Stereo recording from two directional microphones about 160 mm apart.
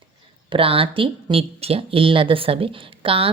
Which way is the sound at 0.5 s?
35° right (ahead or behind).